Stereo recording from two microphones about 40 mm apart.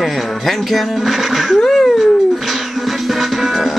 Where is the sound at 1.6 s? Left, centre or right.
Centre.